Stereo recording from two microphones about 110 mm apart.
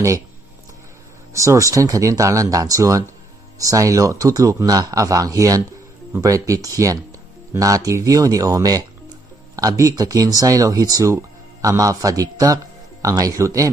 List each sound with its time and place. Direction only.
1.3 s speech: 30° right (ahead or behind)